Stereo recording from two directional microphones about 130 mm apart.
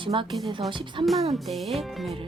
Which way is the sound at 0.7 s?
40° right (ahead or behind).